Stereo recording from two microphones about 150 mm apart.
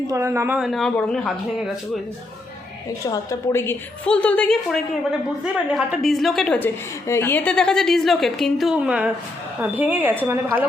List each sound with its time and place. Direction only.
0.1 s a woman's voice: 20° right (ahead or behind)
0.6 s a woman's voice: centre (ahead or behind)
3.1 s a woman's voice: 20° left (ahead or behind); by 10.6 s 15° right (ahead or behind)